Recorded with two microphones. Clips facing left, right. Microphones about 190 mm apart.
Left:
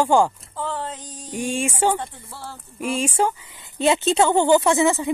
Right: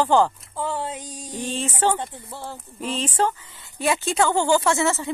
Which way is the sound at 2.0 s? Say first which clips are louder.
Right 1 dB; 20° right (ahead or behind).